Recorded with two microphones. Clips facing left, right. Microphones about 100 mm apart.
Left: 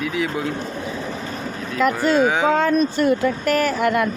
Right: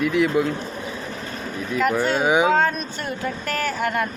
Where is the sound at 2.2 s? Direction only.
15° right (ahead or behind).